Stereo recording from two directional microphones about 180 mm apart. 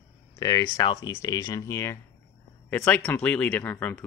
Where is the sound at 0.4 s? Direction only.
20° left (ahead or behind).